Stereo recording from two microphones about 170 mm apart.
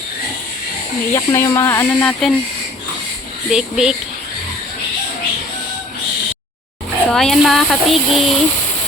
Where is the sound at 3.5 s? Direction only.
5° right (ahead or behind).